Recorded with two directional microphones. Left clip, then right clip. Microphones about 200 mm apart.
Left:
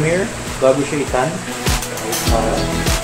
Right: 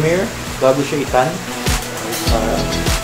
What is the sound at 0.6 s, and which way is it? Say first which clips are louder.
Speech: even; 25° right (ahead or behind).